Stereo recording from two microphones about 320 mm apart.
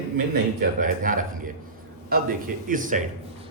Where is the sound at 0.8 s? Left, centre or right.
Right.